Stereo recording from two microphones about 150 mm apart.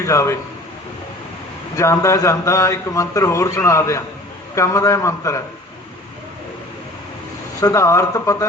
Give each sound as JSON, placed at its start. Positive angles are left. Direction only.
{"t": 0.0, "sound": "a man's voice", "side_deg": 20}
{"t": 1.7, "sound": "a man's voice", "side_deg": 20}
{"t": 7.6, "sound": "a man's voice", "side_deg": 20}